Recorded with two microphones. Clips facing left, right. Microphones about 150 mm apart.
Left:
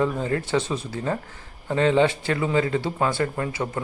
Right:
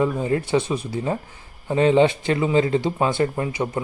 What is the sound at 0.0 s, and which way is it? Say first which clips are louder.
Speech: right 2 dB; 15° right (ahead or behind).